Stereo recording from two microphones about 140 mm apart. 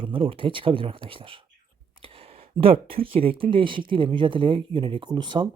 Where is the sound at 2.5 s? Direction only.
40° right (ahead or behind).